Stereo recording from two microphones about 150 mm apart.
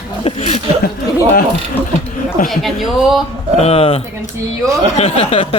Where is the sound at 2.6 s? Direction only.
Centre (ahead or behind).